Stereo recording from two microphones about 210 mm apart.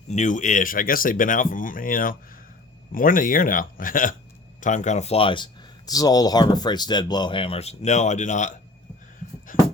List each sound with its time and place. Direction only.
0.1 s speech: 35° left (ahead or behind)